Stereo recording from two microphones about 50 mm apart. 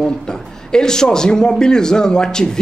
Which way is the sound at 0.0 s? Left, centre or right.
Centre.